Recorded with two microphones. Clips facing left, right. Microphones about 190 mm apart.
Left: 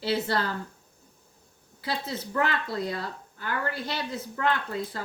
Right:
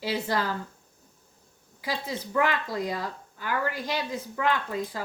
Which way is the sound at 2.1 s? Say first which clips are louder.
Right 3 dB; 15° right (ahead or behind).